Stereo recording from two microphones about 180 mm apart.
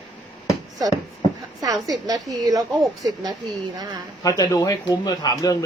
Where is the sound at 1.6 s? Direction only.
20° right (ahead or behind).